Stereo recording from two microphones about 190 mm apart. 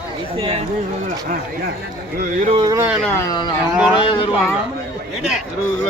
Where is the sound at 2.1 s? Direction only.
45° right (ahead or behind).